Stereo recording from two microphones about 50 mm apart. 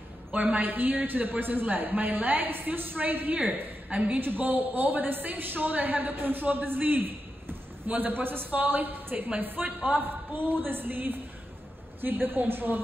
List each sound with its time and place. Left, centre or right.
0.3 s a woman's voice: right
0.6 s a man's voice: right